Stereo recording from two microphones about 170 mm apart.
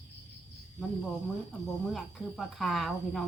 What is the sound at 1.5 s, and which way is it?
Speech, centre (ahead or behind).